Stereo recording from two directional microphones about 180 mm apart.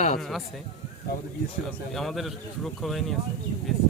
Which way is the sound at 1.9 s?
Centre (ahead or behind).